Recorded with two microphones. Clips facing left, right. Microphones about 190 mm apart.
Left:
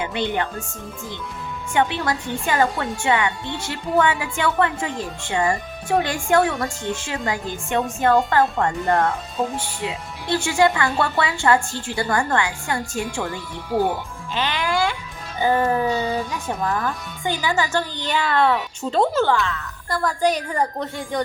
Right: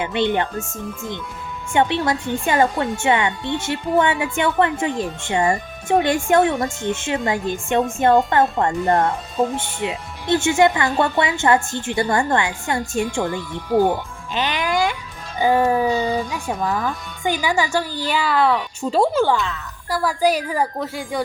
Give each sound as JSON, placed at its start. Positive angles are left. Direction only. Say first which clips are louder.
{"t": 0.0, "sound": "a woman's voice", "louder": "right 4 dB", "side_deg": -20}
{"t": 1.7, "sound": "a woman's voice", "louder": "right 3 dB", "side_deg": -20}
{"t": 9.4, "sound": "speech", "louder": "right 4 dB", "side_deg": 10}
{"t": 9.8, "sound": "a woman's voice", "louder": "right 5 dB", "side_deg": -20}
{"t": 14.3, "sound": "a woman's voice", "louder": "right 2 dB", "side_deg": -20}
{"t": 16.6, "sound": "a woman's voice", "louder": "right 1 dB", "side_deg": 0}
{"t": 17.2, "sound": "a woman's voice", "louder": "right 2 dB", "side_deg": -15}